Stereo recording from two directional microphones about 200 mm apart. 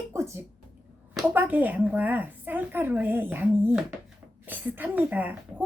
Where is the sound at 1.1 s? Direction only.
10° right (ahead or behind).